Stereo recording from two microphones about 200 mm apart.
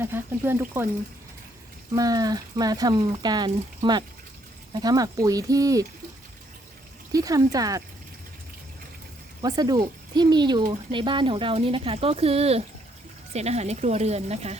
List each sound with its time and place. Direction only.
0.0 s speech: 10° right (ahead or behind)
2.0 s speech: 20° right (ahead or behind)
4.7 s speech: 20° right (ahead or behind)
7.1 s speech: 15° right (ahead or behind)
9.4 s speech: 20° right (ahead or behind)